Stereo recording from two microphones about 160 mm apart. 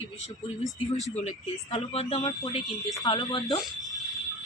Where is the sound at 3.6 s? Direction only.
Centre (ahead or behind).